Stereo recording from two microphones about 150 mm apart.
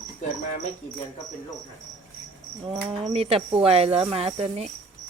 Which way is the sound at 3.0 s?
45° right (ahead or behind).